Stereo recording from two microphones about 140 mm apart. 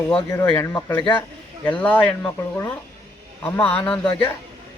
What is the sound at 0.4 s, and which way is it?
Speech, 15° left (ahead or behind).